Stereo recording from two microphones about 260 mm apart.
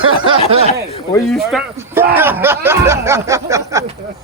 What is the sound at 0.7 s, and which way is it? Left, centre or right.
Speech, left.